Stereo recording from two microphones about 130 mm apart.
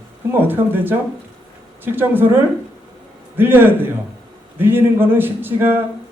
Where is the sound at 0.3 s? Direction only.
15° right (ahead or behind).